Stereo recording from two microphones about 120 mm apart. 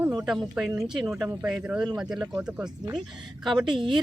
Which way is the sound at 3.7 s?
40° right (ahead or behind).